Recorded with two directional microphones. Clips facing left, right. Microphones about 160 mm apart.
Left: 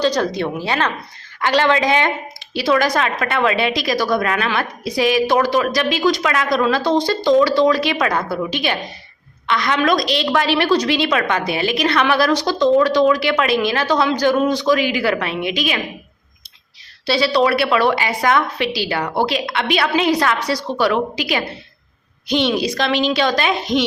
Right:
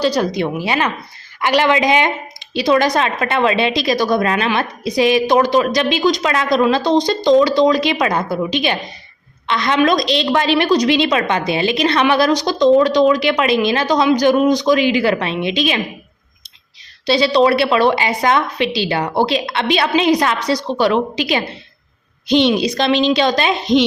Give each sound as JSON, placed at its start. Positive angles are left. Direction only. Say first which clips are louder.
{"t": 0.0, "sound": "a woman's voice", "louder": "right 1 dB", "side_deg": -10}
{"t": 17.1, "sound": "a woman's voice", "louder": "right 3 dB", "side_deg": -20}